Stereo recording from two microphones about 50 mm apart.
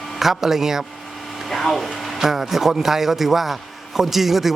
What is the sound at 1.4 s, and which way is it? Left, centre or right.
A man's voice, centre.